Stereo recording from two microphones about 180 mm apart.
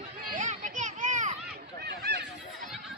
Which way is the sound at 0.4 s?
40° right (ahead or behind).